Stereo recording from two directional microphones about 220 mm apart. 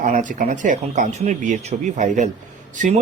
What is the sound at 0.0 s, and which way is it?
Speech, 35° right (ahead or behind).